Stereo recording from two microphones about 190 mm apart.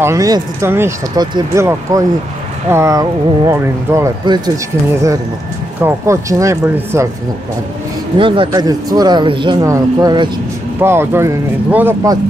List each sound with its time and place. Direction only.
0.0 s speech: 15° right (ahead or behind)
5.8 s speech: 15° right (ahead or behind)
8.2 s speech: 25° right (ahead or behind)